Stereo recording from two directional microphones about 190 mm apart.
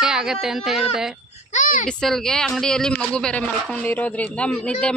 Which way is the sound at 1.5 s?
40° left (ahead or behind).